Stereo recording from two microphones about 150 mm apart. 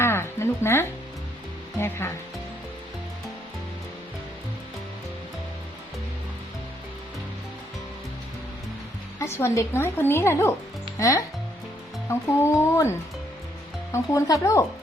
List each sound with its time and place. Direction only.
0.0 s music: 15° left (ahead or behind)
1.8 s a woman's voice: 15° left (ahead or behind)
9.1 s a woman's voice: 20° left (ahead or behind)
12.0 s a woman's voice: 15° left (ahead or behind)
13.9 s speech: 20° left (ahead or behind)